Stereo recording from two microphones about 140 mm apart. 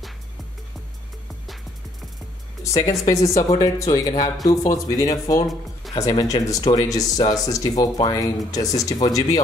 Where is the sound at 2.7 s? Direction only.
25° left (ahead or behind).